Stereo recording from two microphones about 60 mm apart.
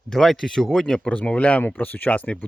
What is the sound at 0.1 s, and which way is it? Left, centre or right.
Speech, centre.